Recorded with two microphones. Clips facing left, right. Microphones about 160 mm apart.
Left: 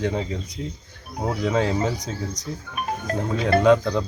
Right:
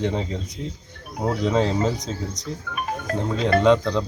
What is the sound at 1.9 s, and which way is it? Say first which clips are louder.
Speech: even; 20° right (ahead or behind).